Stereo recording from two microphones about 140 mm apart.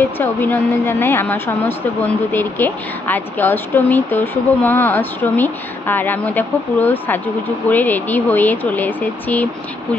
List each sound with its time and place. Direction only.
0.2 s speech: 15° left (ahead or behind)